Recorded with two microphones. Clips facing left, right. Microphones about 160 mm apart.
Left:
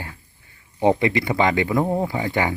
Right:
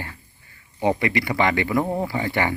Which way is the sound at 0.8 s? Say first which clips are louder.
Left 3 dB; 20° left (ahead or behind).